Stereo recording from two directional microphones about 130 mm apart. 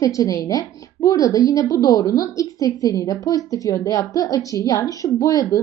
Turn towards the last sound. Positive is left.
turn(degrees=25)  # may be behind; listen again after turning